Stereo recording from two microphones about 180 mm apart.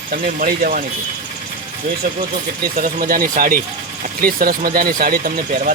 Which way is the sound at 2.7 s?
50° right (ahead or behind).